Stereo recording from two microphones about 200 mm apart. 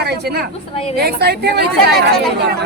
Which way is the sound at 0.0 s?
55° right (ahead or behind).